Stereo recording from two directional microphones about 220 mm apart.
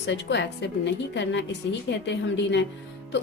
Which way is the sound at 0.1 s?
55° left (ahead or behind).